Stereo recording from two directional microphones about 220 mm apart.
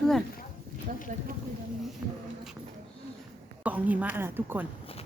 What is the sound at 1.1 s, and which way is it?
Speech, 35° right (ahead or behind).